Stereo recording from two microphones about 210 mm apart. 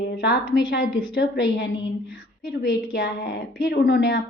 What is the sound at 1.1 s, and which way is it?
Speech, 60° left (ahead or behind).